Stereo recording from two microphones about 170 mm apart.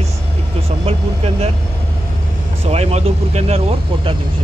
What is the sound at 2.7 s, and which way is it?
Speech, 40° right (ahead or behind).